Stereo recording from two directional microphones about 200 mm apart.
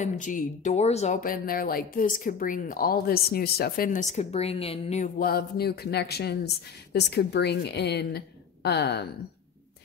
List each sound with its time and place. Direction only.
0.0 s a woman's voice: 40° left (ahead or behind)